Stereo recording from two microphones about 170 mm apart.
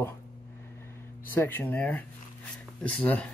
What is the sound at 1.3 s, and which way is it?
Speech, 10° left (ahead or behind).